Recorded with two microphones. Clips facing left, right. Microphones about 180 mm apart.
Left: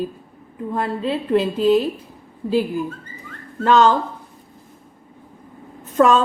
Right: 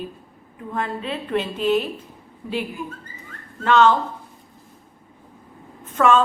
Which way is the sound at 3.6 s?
40° left (ahead or behind).